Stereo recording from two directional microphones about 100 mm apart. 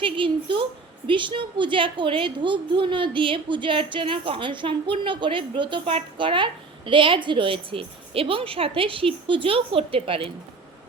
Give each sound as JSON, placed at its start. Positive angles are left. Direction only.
{"t": 0.0, "sound": "a woman's voice", "side_deg": -60}